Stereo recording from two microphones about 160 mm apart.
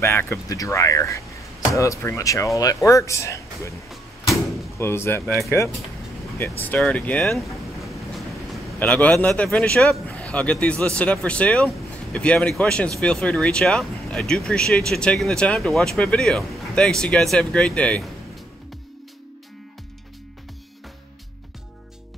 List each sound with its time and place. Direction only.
0.0 s speech: 15° left (ahead or behind)
4.7 s a man's voice: 15° left (ahead or behind)
6.6 s a man's voice: 10° left (ahead or behind)